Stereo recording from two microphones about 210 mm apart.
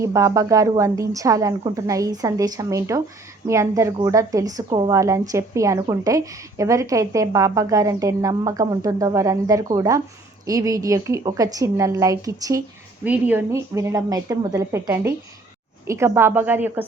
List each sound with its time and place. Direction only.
0.0 s a woman's voice: 15° right (ahead or behind)